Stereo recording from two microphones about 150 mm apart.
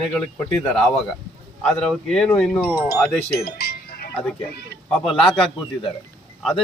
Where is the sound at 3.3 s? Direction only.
90° left.